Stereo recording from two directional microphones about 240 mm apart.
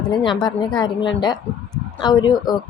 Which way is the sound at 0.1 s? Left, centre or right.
Centre.